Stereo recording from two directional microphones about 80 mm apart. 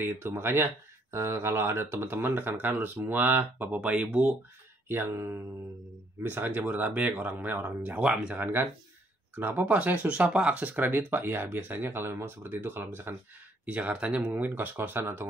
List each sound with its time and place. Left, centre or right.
0.0 s speech: right
4.8 s speech: right
13.7 s speech: centre
14.3 s speech: right